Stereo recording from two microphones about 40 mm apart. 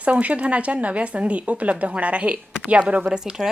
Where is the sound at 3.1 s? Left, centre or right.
Centre.